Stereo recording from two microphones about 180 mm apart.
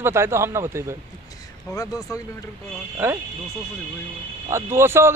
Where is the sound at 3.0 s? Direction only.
10° right (ahead or behind).